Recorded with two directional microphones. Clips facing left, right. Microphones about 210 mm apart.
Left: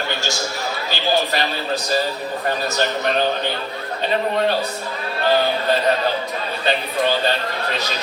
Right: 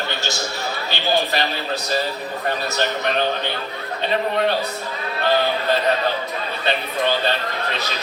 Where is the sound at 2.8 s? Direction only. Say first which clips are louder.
Left 1 dB; 30° left (ahead or behind).